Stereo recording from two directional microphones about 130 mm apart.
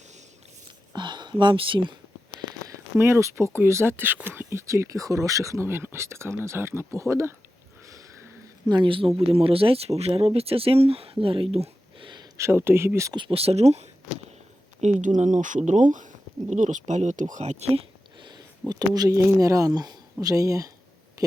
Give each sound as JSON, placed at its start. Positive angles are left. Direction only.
{"t": 0.9, "sound": "speech", "side_deg": -35}
{"t": 3.0, "sound": "speech", "side_deg": -20}
{"t": 8.7, "sound": "speech", "side_deg": -40}
{"t": 12.4, "sound": "speech", "side_deg": -20}
{"t": 13.1, "sound": "speech", "side_deg": -45}
{"t": 18.7, "sound": "speech", "side_deg": -30}
{"t": 21.2, "sound": "a sound", "side_deg": -25}